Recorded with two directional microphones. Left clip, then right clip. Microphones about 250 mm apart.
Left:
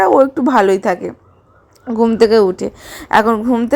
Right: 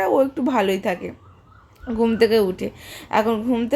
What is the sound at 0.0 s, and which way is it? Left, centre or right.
A woman's voice, left.